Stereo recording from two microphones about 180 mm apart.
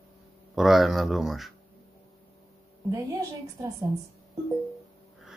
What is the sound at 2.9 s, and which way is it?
Speech, 20° right (ahead or behind).